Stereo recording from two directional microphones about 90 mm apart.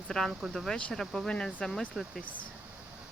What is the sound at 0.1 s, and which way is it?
Speech, 5° left (ahead or behind).